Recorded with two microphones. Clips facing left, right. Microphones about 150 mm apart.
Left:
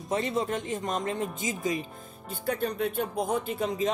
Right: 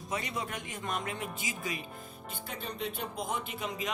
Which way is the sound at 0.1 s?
25° left (ahead or behind).